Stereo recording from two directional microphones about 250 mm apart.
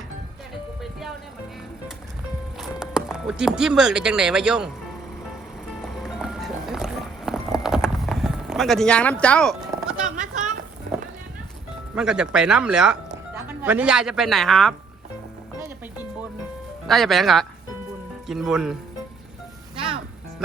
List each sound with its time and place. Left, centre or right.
0.8 s music: centre
2.6 s speech: centre
5.8 s music: centre
9.2 s speech: centre
10.0 s a sound: right
11.9 s speech: centre
16.8 s speech: centre
19.7 s music: right